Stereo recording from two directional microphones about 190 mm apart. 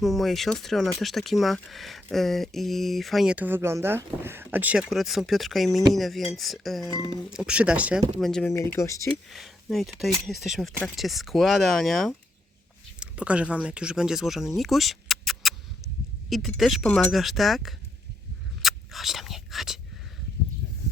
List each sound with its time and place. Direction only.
0.0 s speech: centre (ahead or behind)
8.7 s speech: 15° left (ahead or behind)
9.3 s speech: centre (ahead or behind)
18.6 s whispering: centre (ahead or behind)